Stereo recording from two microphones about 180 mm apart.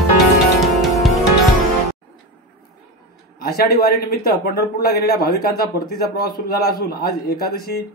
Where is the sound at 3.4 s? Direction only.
60° left (ahead or behind).